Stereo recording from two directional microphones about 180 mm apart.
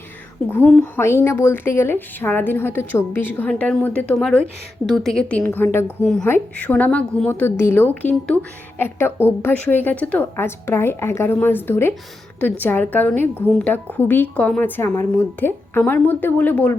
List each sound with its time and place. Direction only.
0.5 s a woman's voice: 10° left (ahead or behind)